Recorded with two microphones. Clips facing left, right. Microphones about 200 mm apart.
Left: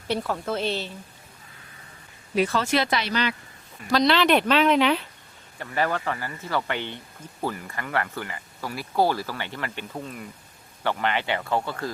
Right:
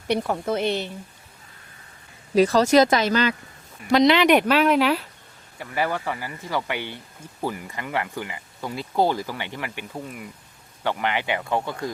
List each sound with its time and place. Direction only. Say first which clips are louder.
0.1 s speech: right 3 dB; 20° right (ahead or behind)
2.3 s speech: right 7 dB; 40° right (ahead or behind)
3.9 s speech: right 4 dB; 15° right (ahead or behind)
10.8 s speech: right 1 dB; 15° right (ahead or behind)